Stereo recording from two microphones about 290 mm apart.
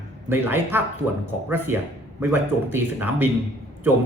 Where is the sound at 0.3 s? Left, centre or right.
Centre.